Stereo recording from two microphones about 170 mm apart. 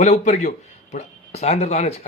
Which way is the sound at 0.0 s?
45° left (ahead or behind).